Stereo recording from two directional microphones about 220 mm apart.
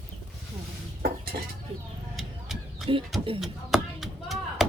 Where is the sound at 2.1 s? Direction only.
Centre (ahead or behind).